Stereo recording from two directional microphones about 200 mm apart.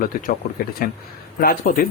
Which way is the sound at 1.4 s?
45° left (ahead or behind).